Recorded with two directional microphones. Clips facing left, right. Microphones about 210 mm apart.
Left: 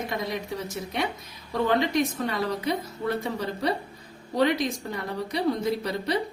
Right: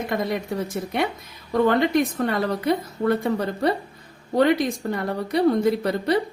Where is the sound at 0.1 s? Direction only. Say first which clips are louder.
Right 5 dB; 55° right (ahead or behind).